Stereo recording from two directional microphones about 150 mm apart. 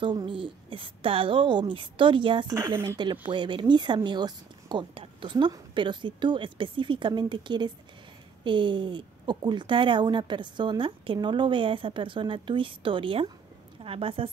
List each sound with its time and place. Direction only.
0.0 s a woman's voice: 30° right (ahead or behind)
2.5 s speech: 15° right (ahead or behind)
3.3 s a woman's voice: 30° right (ahead or behind)